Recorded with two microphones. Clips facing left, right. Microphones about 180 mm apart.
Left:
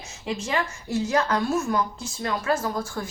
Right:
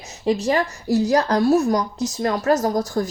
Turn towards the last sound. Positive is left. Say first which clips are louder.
# right 8 dB
turn(degrees=-40)  # may be behind; listen again after turning